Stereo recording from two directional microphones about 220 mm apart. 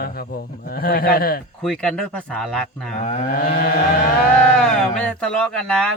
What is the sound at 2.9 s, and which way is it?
Speech, 30° left (ahead or behind).